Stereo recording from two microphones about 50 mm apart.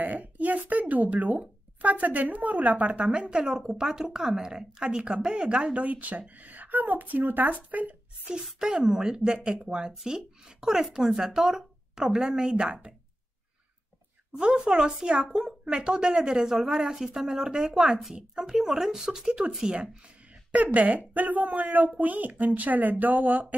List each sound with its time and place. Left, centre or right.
0.0 s a woman's voice: right
8.5 s speech: centre
14.3 s speech: centre
20.5 s a woman's voice: right